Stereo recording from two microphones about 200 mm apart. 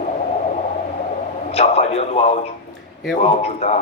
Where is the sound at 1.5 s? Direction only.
30° left (ahead or behind).